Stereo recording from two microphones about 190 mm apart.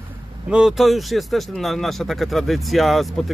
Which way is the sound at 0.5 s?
5° right (ahead or behind).